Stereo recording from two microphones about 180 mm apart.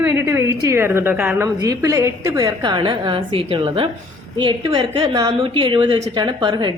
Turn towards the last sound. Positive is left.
turn(degrees=-25)  # may be behind; listen again after turning